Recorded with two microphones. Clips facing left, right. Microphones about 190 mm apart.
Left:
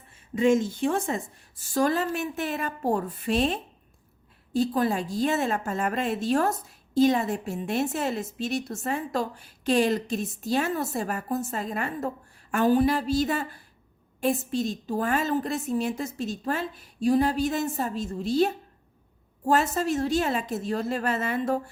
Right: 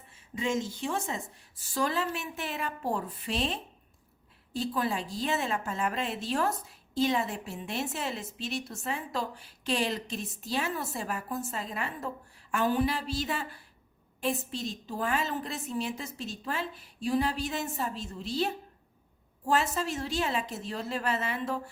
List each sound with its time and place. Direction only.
0.1 s a woman's voice: 50° left (ahead or behind)